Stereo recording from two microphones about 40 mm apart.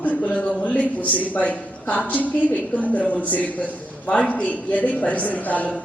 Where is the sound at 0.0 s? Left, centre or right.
Left.